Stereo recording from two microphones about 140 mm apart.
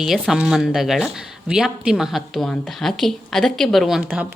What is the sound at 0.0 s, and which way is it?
Speech, 5° right (ahead or behind).